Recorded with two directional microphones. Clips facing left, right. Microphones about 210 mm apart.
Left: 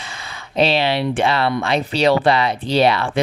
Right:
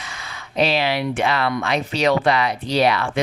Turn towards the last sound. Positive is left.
turn(degrees=30)  # may be behind; listen again after turning